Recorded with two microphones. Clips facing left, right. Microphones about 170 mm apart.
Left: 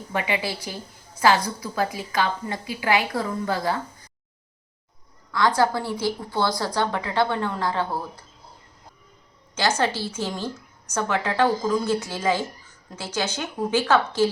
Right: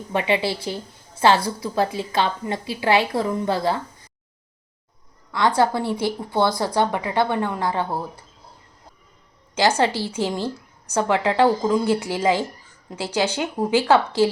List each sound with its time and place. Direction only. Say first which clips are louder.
0.1 s a woman's voice: right 5 dB; 25° right (ahead or behind)
5.3 s a woman's voice: right 2 dB; 25° right (ahead or behind)
9.8 s speech: right 3 dB; 15° right (ahead or behind)